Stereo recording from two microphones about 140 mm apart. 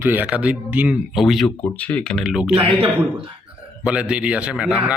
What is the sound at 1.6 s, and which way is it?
Speech, 10° left (ahead or behind).